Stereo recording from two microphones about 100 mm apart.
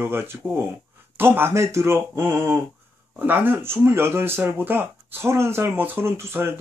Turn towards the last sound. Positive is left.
turn(degrees=-25)  # may be behind; listen again after turning